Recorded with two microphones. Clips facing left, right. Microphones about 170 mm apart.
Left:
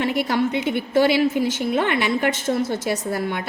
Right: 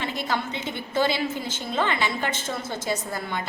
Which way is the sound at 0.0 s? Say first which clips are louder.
Left 8 dB; 65° left (ahead or behind).